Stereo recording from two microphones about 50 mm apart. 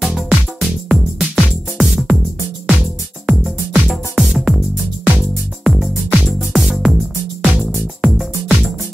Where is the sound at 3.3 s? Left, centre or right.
Centre.